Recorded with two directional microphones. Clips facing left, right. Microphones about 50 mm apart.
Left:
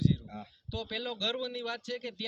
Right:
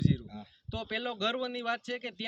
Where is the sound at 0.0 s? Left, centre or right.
Right.